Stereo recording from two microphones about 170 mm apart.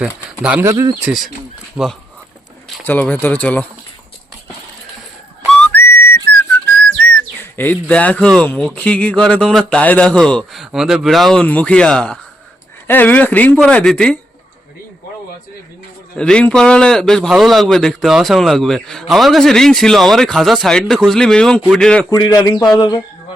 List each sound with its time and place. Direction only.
0.6 s speech: 20° right (ahead or behind)
1.0 s a man's voice: centre (ahead or behind)
2.8 s speech: 10° left (ahead or behind)
5.5 s whistle: 10° left (ahead or behind)
7.5 s a man's voice: 10° left (ahead or behind)
16.1 s a man's voice: 5° left (ahead or behind)
22.1 s a man's voice: 25° left (ahead or behind)